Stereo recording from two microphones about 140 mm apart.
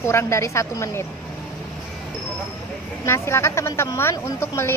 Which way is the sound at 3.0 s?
20° left (ahead or behind).